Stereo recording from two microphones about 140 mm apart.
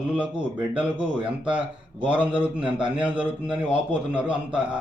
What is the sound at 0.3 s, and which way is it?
Speech, 35° right (ahead or behind).